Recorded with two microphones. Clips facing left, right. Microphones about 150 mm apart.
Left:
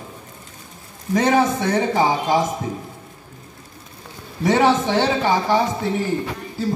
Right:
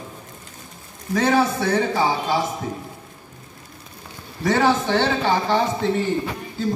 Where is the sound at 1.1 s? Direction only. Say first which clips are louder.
Left 2 dB; 15° left (ahead or behind).